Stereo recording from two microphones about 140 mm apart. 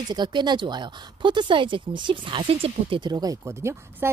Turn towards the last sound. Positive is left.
turn(degrees=-20)  # may be behind; listen again after turning